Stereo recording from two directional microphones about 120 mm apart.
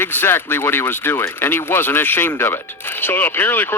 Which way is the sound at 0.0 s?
15° left (ahead or behind).